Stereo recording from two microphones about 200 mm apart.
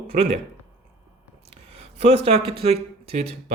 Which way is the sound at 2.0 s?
30° right (ahead or behind).